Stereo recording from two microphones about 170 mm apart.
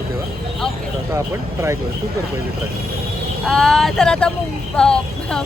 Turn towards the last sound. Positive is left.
turn(degrees=5)  # may be behind; listen again after turning